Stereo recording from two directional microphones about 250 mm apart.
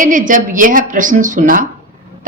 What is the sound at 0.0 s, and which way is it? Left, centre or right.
Speech, right.